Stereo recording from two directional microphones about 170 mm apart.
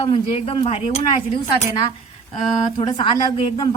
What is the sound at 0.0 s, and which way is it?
Speech, 35° left (ahead or behind).